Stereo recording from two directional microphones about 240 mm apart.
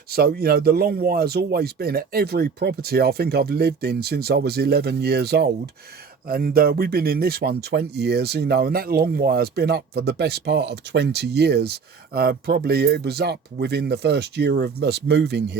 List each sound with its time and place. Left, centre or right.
0.1 s speech: right